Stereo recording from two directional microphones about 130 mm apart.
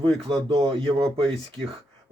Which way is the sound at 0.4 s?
45° right (ahead or behind).